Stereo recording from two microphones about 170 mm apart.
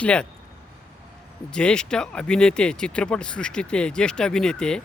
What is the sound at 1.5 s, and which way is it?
Speech, 5° left (ahead or behind).